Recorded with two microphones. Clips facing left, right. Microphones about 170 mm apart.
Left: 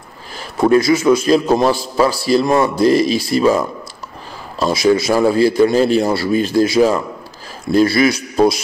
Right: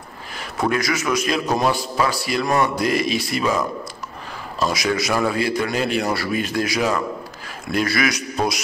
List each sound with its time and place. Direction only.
0.4 s speech: 30° left (ahead or behind)